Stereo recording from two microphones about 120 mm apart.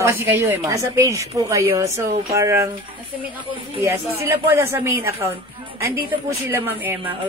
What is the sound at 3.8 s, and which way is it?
A man's voice, 20° right (ahead or behind).